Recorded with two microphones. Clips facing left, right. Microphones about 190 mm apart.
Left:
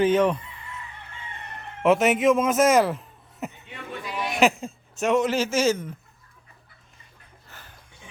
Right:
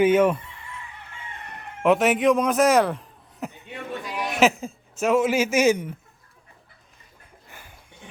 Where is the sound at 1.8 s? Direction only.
Centre (ahead or behind).